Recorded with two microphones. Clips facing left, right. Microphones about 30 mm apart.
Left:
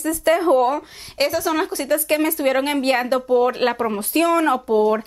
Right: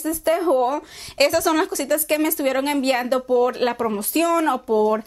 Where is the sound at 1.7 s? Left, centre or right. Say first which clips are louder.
Left 1 dB; left.